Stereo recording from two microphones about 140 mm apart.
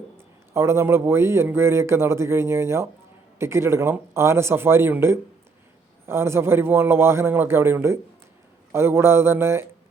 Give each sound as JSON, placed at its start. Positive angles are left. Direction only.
{"t": 0.5, "sound": "a man's voice", "side_deg": -20}